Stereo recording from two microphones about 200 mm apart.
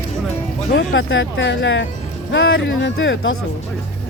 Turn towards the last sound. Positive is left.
turn(degrees=65)  # may be behind; listen again after turning